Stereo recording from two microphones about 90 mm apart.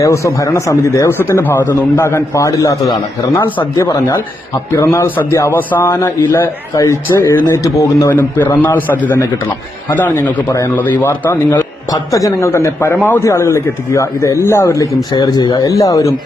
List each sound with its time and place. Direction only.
0.0 s speech: 35° left (ahead or behind)
1.2 s a man's voice: 25° left (ahead or behind)
4.7 s a man's voice: 30° left (ahead or behind)
5.5 s a man's voice: 25° left (ahead or behind)
6.7 s speech: 35° left (ahead or behind)
8.1 s a man's voice: 20° left (ahead or behind)
11.9 s speech: 40° left (ahead or behind); by 13.2 s 20° left (ahead or behind)
13.2 s speech: 35° left (ahead or behind)
15.1 s speech: 50° left (ahead or behind)